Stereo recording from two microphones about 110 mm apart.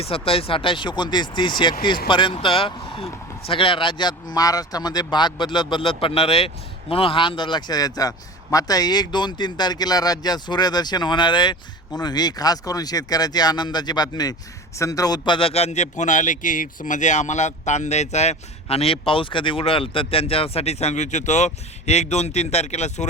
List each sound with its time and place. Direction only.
0.0 s a man's voice: 60° left (ahead or behind); by 23.0 s 90° left